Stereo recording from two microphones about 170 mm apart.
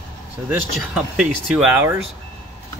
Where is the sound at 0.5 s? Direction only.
5° right (ahead or behind).